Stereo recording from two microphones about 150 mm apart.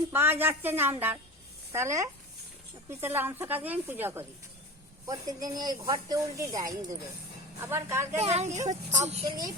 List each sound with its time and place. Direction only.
0.1 s speech: 15° right (ahead or behind)
5.0 s speech: 25° right (ahead or behind)
8.2 s speech: 45° right (ahead or behind)